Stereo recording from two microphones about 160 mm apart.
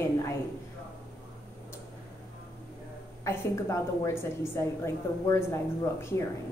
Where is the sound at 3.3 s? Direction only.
20° left (ahead or behind).